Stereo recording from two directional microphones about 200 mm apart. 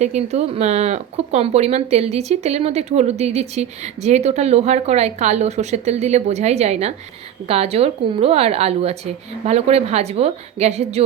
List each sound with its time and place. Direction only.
0.0 s speech: 35° right (ahead or behind)